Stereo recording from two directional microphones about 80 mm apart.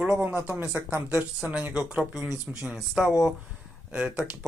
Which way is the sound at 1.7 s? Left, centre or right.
Centre.